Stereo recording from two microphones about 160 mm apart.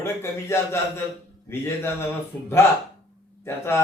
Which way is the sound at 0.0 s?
15° left (ahead or behind).